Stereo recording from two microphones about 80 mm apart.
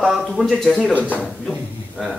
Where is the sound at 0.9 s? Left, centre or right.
Centre.